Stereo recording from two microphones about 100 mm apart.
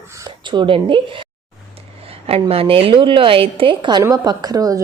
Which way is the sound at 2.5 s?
70° right (ahead or behind).